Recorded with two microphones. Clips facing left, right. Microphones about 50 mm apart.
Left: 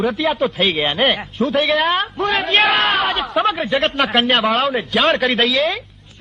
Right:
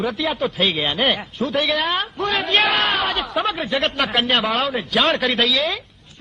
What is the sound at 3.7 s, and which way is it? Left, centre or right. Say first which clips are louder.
Speech: left 3 dB; left.